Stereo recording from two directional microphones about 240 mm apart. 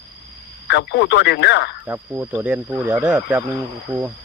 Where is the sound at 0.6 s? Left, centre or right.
Left.